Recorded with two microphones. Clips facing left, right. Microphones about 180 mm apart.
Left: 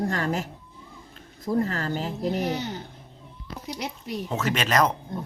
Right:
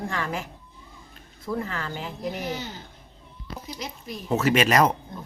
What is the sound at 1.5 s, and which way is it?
Speech, 40° left (ahead or behind).